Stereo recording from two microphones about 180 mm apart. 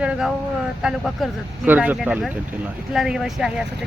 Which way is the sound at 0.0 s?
5° right (ahead or behind).